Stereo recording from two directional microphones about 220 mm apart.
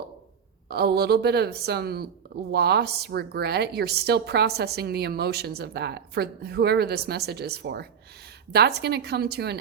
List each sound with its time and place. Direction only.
0.7 s a woman's voice: 45° right (ahead or behind)